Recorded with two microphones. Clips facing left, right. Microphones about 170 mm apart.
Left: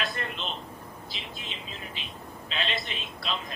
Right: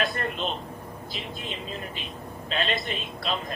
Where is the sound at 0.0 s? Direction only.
45° right (ahead or behind).